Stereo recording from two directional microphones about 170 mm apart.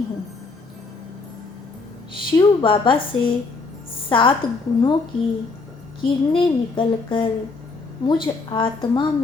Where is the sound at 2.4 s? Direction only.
30° left (ahead or behind).